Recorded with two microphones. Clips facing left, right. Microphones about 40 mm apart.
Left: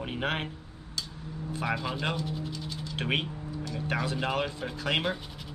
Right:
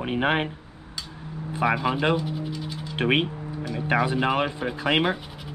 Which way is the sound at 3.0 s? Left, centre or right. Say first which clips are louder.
Right 8 dB; right.